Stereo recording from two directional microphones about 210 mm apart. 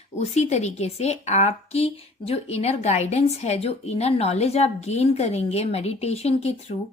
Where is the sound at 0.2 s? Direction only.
30° left (ahead or behind).